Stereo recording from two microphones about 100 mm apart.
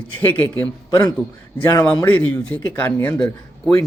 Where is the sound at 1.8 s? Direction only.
15° left (ahead or behind).